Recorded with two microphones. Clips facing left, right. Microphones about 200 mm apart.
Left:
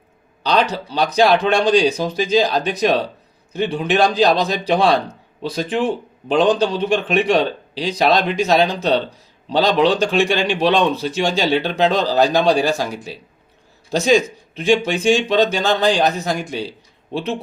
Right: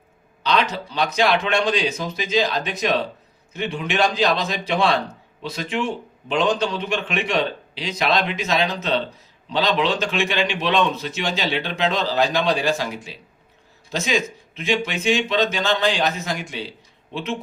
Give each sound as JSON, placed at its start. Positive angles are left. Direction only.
{"t": 0.4, "sound": "speech", "side_deg": 35}